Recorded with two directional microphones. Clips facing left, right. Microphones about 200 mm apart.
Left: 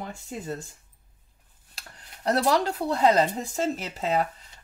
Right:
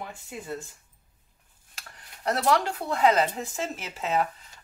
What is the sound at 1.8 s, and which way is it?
Speech, 35° left (ahead or behind).